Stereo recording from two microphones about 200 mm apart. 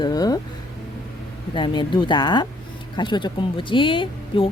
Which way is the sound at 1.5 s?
25° left (ahead or behind).